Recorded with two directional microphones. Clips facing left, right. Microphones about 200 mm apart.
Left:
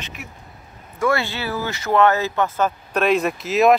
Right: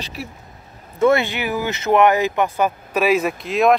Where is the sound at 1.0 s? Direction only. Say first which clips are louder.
Right 5 dB; 20° right (ahead or behind).